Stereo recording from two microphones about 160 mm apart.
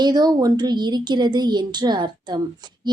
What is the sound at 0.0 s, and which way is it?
A woman's voice, 25° right (ahead or behind).